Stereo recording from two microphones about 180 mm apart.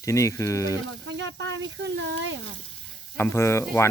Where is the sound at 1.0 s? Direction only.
80° right.